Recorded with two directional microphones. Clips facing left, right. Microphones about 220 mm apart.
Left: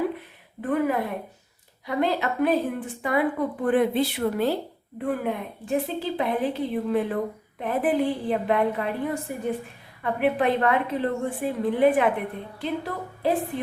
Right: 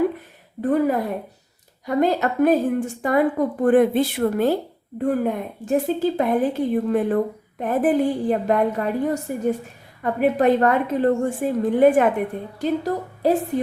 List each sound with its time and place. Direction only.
0.6 s a woman's voice: 40° right (ahead or behind)